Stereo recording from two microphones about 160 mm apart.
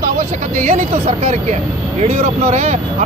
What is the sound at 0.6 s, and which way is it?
Speech, 45° right (ahead or behind).